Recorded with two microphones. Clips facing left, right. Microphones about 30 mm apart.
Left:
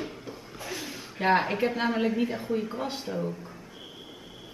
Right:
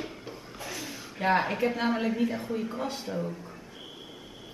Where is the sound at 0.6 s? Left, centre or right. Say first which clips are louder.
Left 2 dB; centre.